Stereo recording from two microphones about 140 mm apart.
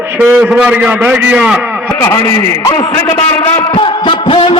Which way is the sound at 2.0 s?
25° left (ahead or behind).